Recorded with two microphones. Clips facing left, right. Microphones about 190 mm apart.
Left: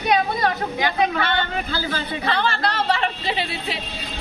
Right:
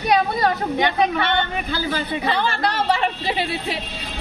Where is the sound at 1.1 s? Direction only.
20° right (ahead or behind).